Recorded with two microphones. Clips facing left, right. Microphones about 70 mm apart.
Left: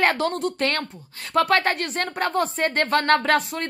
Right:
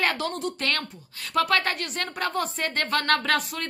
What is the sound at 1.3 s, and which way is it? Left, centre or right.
A woman's voice, left.